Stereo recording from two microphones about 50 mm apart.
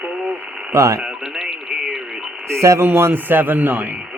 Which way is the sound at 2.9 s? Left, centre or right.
Right.